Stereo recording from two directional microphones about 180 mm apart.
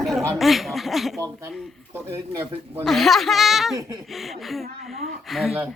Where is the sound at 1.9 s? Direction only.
10° right (ahead or behind).